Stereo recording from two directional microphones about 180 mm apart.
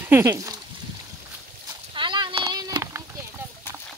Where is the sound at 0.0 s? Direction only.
15° right (ahead or behind).